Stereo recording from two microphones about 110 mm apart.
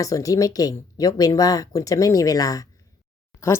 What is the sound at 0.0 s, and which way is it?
A woman's voice, 30° left (ahead or behind).